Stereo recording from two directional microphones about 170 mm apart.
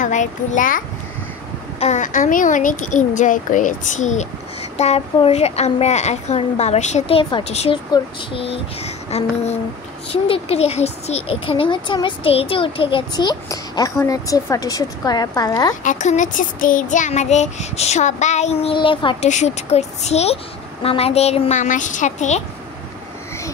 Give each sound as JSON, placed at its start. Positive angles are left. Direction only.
{"t": 0.0, "sound": "child singing", "side_deg": 45}
{"t": 4.7, "sound": "a woman's voice", "side_deg": 40}
{"t": 15.8, "sound": "child singing", "side_deg": 45}
{"t": 19.2, "sound": "a woman's voice", "side_deg": 45}
{"t": 20.8, "sound": "child singing", "side_deg": 35}